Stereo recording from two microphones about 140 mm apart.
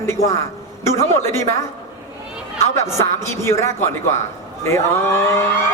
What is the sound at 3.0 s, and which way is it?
Speech, 20° left (ahead or behind).